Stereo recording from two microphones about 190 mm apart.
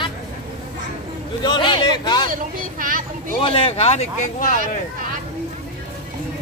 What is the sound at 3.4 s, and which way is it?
Speech, 30° left (ahead or behind).